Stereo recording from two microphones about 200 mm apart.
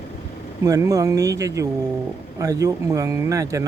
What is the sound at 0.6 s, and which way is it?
Speech, 15° right (ahead or behind).